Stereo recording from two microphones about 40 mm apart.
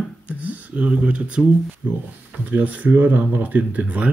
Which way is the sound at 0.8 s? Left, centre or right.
Right.